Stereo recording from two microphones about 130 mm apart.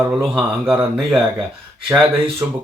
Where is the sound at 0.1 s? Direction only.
5° right (ahead or behind).